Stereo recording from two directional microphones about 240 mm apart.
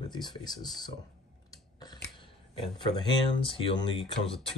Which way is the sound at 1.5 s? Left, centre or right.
Centre.